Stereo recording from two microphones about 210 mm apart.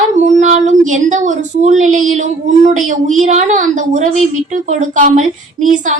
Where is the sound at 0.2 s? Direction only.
35° right (ahead or behind).